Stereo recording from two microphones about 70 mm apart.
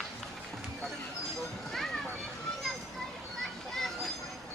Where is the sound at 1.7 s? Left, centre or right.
Centre.